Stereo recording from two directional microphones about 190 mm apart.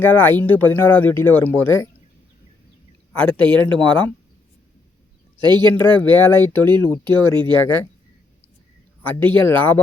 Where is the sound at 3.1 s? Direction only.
5° left (ahead or behind).